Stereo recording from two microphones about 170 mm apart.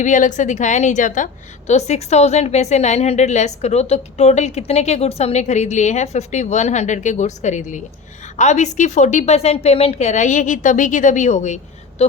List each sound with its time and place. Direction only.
0.0 s a woman's voice: 45° left (ahead or behind)